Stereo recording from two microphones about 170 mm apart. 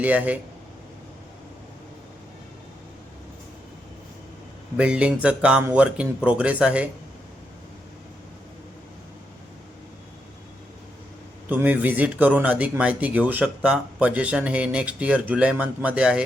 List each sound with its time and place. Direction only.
0.0 s speech: 10° right (ahead or behind)
4.8 s speech: 5° right (ahead or behind)
11.4 s speech: 10° right (ahead or behind)